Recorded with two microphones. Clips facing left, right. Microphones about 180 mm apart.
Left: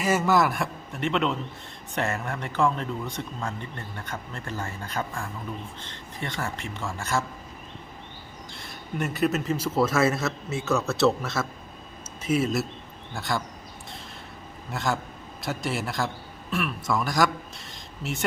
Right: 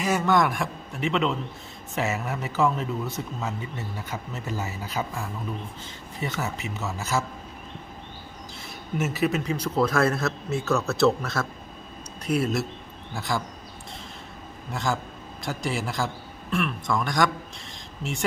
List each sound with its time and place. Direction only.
0.0 s speech: 5° left (ahead or behind)
8.5 s speech: centre (ahead or behind)
14.7 s a man's voice: centre (ahead or behind)